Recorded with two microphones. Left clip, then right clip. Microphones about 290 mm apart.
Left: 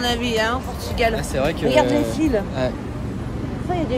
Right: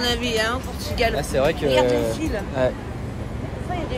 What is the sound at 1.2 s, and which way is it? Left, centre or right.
Speech, centre.